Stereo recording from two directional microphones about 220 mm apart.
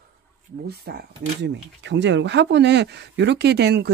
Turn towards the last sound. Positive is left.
turn(degrees=-50)  # may be behind; listen again after turning